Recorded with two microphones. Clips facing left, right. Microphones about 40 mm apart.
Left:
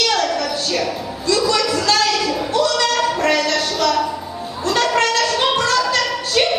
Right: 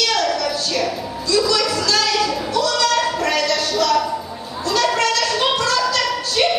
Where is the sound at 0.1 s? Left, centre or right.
Left.